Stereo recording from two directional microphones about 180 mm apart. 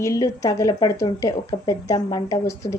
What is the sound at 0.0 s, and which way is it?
A woman's voice, 20° left (ahead or behind).